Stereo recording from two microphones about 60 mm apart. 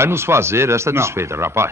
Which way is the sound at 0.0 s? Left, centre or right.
Right.